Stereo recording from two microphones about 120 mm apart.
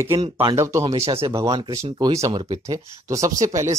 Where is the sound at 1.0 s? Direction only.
60° right (ahead or behind).